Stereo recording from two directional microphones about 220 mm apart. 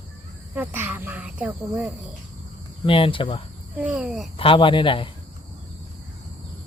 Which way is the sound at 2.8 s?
25° left (ahead or behind).